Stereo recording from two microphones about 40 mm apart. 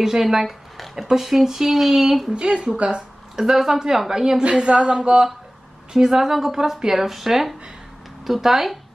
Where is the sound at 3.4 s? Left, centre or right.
Centre.